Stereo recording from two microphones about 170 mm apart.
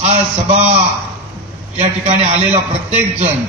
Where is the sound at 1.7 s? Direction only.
40° right (ahead or behind).